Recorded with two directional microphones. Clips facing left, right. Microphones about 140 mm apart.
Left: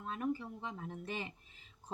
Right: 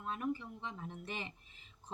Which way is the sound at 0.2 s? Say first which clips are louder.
Left 1 dB; 40° left (ahead or behind).